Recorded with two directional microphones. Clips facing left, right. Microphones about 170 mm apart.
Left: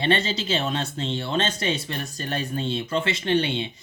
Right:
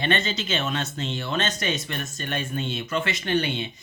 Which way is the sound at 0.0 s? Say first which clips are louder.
Left 2 dB; 30° left (ahead or behind).